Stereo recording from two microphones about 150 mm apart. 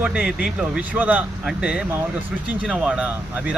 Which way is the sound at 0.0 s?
5° right (ahead or behind).